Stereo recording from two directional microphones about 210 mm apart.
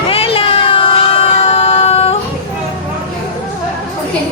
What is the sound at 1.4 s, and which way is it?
Music, 30° left (ahead or behind).